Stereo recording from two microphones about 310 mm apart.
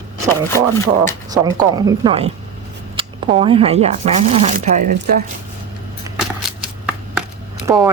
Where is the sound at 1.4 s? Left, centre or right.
Centre; by 5.2 s right.